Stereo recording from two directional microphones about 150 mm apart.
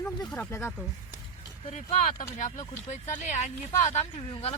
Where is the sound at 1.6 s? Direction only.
50° left (ahead or behind).